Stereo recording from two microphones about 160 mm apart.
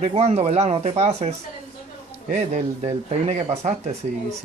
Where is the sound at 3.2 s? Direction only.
45° right (ahead or behind).